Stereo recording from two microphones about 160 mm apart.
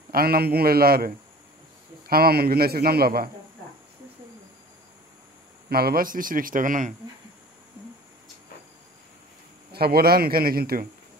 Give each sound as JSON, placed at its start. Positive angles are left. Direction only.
{"t": 0.1, "sound": "a man's voice", "side_deg": -70}
{"t": 5.7, "sound": "speech", "side_deg": -70}
{"t": 9.7, "sound": "a man's voice", "side_deg": -75}